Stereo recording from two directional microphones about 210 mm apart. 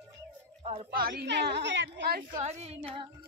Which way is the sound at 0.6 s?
25° right (ahead or behind).